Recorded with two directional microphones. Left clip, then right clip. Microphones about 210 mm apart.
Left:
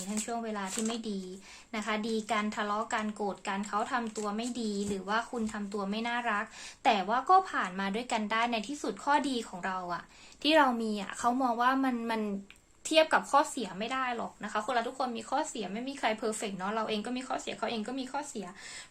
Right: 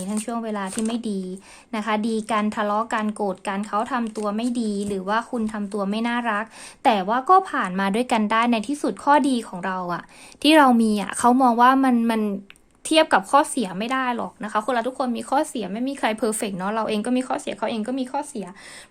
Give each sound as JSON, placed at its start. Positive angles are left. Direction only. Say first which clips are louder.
{"t": 0.3, "sound": "speech", "louder": "right 7 dB", "side_deg": -50}